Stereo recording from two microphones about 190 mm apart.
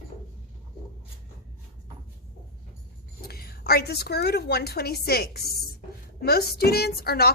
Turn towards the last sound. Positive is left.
turn(degrees=55)  # may be behind; listen again after turning